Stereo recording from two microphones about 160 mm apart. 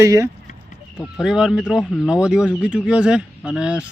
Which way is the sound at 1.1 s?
5° right (ahead or behind).